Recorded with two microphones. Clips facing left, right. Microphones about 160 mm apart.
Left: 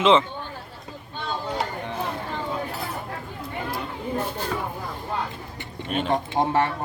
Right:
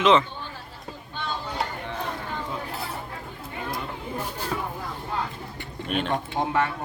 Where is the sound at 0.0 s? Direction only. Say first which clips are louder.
Left 1 dB; 25° left (ahead or behind).